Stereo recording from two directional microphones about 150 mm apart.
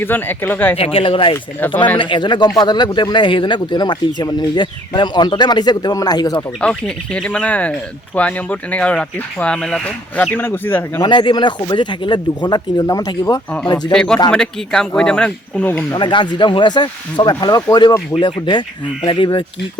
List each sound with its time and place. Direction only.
0.0 s speech: 15° left (ahead or behind)
0.8 s a man's voice: 35° left (ahead or behind)
6.6 s speech: 5° left (ahead or behind)
11.0 s a man's voice: 30° left (ahead or behind)
13.9 s speech: 5° left (ahead or behind)
15.9 s a man's voice: 30° left (ahead or behind)